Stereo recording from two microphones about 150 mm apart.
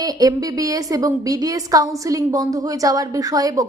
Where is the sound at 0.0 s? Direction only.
25° right (ahead or behind).